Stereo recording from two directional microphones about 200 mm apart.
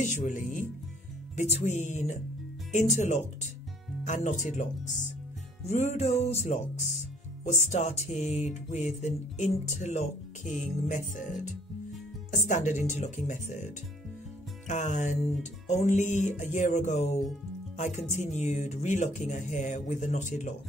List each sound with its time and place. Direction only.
0.0 s music: 40° left (ahead or behind)
14.7 s music: 35° left (ahead or behind)